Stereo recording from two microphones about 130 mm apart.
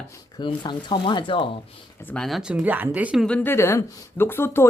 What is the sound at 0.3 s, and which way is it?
Speech, 35° left (ahead or behind).